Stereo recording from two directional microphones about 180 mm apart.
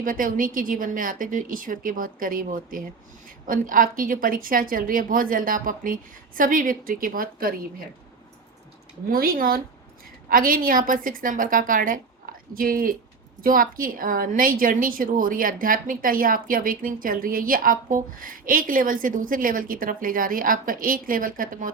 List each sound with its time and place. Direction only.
0.0 s a woman's voice: 50° right (ahead or behind)
9.0 s a woman's voice: 55° right (ahead or behind)